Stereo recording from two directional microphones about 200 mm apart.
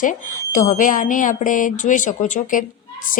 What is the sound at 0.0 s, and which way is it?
A woman's voice, 40° left (ahead or behind).